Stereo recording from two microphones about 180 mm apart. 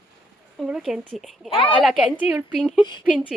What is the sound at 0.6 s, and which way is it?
Speech, centre (ahead or behind).